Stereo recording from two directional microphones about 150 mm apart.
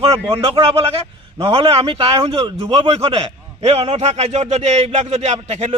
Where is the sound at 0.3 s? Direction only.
40° right (ahead or behind).